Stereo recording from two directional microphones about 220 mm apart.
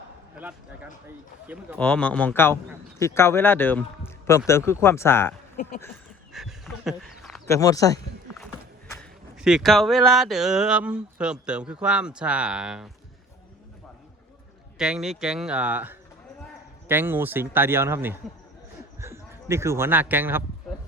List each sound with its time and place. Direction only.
0.3 s speech: 5° right (ahead or behind)
1.8 s speech: 5° left (ahead or behind)
6.3 s a sound: centre (ahead or behind)
7.4 s speech: 15° left (ahead or behind)
9.0 s speech: centre (ahead or behind)
14.8 s speech: 5° right (ahead or behind)